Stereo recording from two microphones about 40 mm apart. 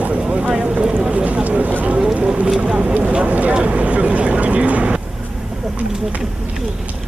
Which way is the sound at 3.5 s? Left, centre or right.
Right.